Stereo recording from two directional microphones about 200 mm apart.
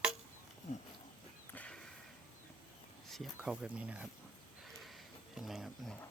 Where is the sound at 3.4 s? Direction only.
5° right (ahead or behind).